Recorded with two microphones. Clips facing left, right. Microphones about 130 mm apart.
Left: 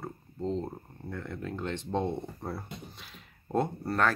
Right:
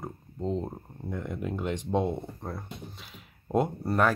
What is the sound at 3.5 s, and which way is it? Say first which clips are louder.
Speech: right 3 dB; 10° right (ahead or behind).